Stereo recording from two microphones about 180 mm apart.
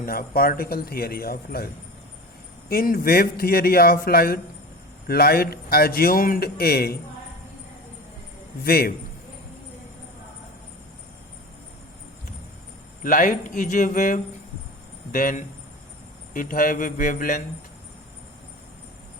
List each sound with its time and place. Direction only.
0.0 s a man's voice: 55° left (ahead or behind)
2.6 s a man's voice: 55° left (ahead or behind)
8.6 s a man's voice: 55° left (ahead or behind)
13.0 s speech: 50° left (ahead or behind)